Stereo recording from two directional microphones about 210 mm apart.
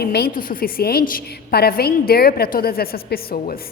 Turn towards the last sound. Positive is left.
turn(degrees=45)  # may be behind; listen again after turning